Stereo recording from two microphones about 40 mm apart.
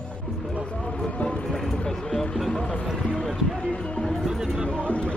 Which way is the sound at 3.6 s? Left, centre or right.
Left.